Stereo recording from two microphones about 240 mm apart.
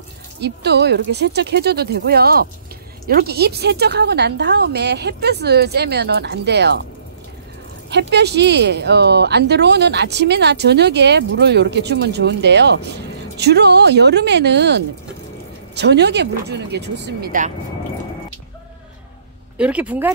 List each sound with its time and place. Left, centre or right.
0.4 s speech: right
7.9 s speech: right
19.5 s speech: centre